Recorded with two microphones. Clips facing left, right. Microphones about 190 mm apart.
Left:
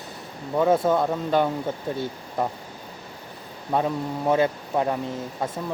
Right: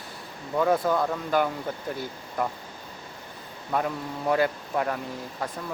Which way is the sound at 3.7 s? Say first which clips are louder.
Left 4 dB; 25° left (ahead or behind).